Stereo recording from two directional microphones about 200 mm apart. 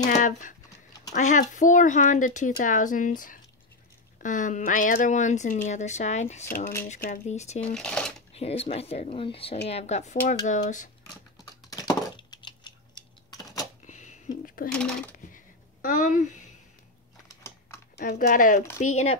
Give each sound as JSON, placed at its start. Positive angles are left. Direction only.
{"t": 0.1, "sound": "speech", "side_deg": 40}
{"t": 7.6, "sound": "speech", "side_deg": 5}
{"t": 8.3, "sound": "speech", "side_deg": 30}
{"t": 11.7, "sound": "computer keyboard", "side_deg": 20}
{"t": 13.8, "sound": "a sound", "side_deg": 35}
{"t": 14.4, "sound": "speech", "side_deg": 45}
{"t": 14.7, "sound": "speech", "side_deg": 5}
{"t": 15.1, "sound": "a sound", "side_deg": 40}
{"t": 18.0, "sound": "speech", "side_deg": 40}